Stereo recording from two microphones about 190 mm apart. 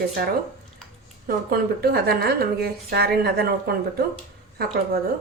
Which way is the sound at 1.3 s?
55° right (ahead or behind).